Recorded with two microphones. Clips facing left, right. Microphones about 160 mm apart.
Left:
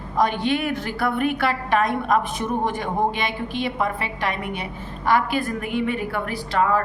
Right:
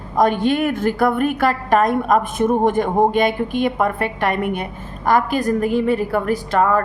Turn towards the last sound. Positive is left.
turn(degrees=-45)  # may be behind; listen again after turning